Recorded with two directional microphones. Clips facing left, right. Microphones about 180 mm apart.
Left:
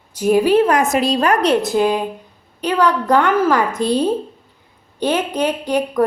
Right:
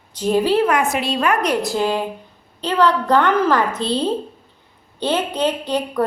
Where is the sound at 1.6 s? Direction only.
15° left (ahead or behind).